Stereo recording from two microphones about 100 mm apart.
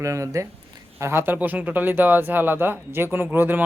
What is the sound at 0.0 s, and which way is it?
Speech, 30° right (ahead or behind).